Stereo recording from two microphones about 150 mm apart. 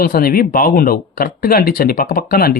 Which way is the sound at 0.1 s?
85° left.